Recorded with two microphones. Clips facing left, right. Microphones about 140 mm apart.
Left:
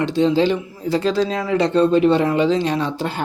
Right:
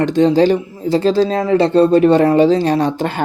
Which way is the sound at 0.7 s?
30° right (ahead or behind).